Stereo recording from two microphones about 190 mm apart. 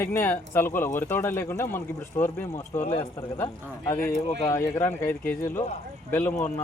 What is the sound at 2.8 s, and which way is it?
Speech, 30° left (ahead or behind).